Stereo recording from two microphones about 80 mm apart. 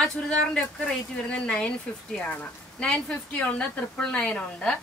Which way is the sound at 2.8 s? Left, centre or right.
Centre.